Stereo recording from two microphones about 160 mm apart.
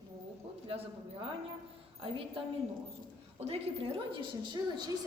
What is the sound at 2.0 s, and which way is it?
A woman's voice, 35° right (ahead or behind).